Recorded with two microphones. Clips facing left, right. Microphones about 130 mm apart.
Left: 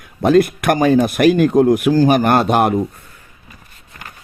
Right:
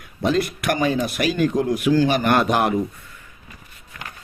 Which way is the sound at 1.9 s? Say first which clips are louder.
Left 5 dB; 40° left (ahead or behind).